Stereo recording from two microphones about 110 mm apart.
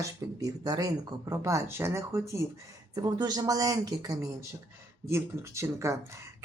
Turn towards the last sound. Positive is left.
turn(degrees=-25)  # may be behind; listen again after turning